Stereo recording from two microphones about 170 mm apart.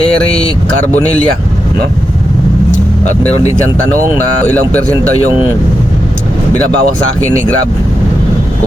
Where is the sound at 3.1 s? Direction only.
40° left (ahead or behind).